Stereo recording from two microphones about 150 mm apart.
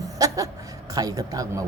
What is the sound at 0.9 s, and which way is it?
Speech, 25° right (ahead or behind).